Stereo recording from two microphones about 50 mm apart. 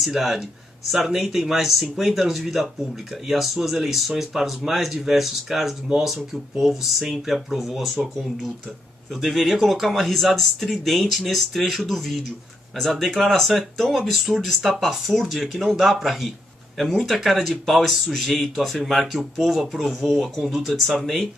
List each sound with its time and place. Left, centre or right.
0.0 s speech: centre
9.1 s speech: centre